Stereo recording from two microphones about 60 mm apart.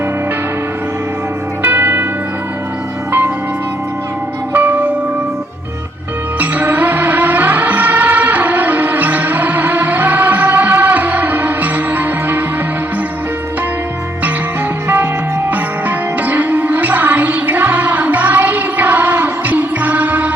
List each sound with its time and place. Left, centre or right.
1.6 s music: right
3.1 s music: right
4.5 s bell: right
6.4 s music: right
14.8 s music: right